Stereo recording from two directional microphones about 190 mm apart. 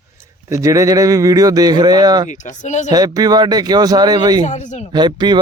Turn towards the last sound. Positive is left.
turn(degrees=-25)  # may be behind; listen again after turning